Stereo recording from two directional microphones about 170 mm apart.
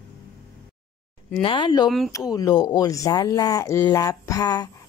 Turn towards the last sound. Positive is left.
turn(degrees=20)  # may be behind; listen again after turning